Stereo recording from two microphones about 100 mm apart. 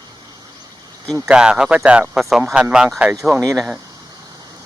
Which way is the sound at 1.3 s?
10° right (ahead or behind).